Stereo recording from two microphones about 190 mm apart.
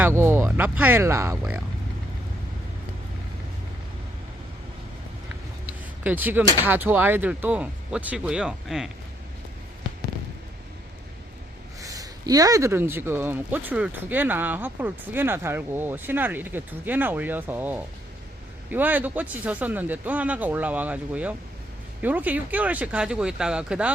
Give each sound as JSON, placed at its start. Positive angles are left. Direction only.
{"t": 0.0, "sound": "speech", "side_deg": -10}
{"t": 5.6, "sound": "speech", "side_deg": -10}
{"t": 11.8, "sound": "speech", "side_deg": -20}